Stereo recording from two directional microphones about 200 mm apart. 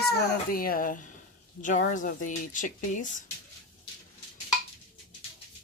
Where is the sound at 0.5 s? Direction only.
45° left (ahead or behind).